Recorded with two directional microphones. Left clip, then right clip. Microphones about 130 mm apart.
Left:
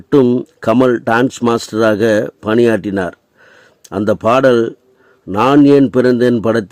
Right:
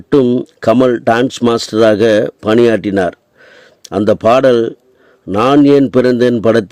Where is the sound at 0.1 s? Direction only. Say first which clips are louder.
Even; 25° right (ahead or behind).